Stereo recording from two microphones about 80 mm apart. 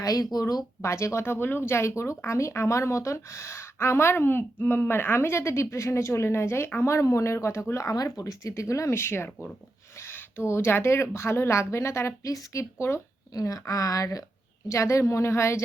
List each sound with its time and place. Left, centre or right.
0.0 s speech: left
0.8 s speech: left